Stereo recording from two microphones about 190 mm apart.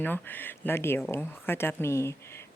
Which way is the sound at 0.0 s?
10° left (ahead or behind).